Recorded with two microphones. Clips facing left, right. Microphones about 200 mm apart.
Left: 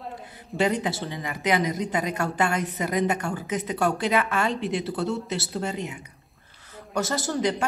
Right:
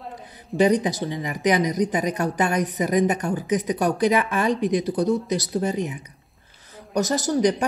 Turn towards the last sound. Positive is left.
turn(degrees=-20)  # may be behind; listen again after turning